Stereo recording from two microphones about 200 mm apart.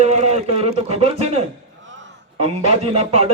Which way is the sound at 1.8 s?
70° right (ahead or behind).